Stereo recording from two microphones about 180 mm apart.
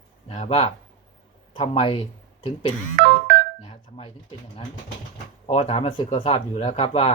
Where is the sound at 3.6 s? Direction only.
35° left (ahead or behind).